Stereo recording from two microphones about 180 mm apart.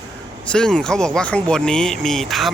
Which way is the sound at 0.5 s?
5° left (ahead or behind).